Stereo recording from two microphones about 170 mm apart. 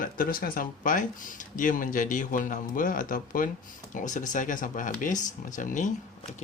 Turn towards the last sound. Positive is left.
turn(degrees=50)  # may be behind; listen again after turning